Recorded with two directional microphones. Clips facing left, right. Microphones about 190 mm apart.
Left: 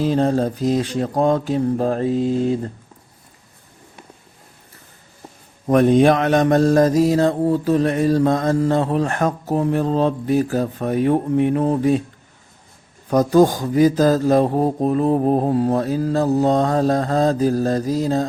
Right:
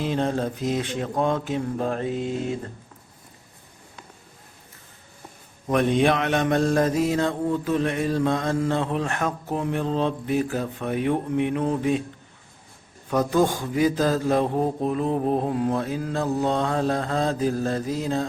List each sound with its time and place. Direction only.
0.0 s mantra: 40° left (ahead or behind)
5.6 s mantra: 40° left (ahead or behind)
13.1 s mantra: 40° left (ahead or behind)